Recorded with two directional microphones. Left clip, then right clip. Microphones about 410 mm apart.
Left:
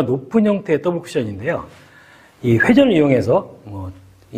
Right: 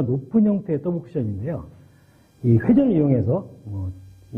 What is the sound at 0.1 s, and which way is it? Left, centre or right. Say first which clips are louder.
Speech: left 5 dB; centre.